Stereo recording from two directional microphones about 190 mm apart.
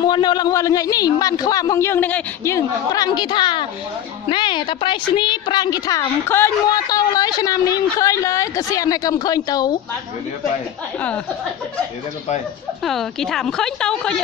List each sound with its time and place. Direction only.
0.0 s a woman's voice: 25° left (ahead or behind)
12.8 s a woman's voice: centre (ahead or behind)